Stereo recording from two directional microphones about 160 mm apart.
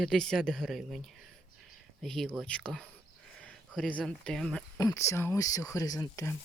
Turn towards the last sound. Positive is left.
turn(degrees=15)  # may be behind; listen again after turning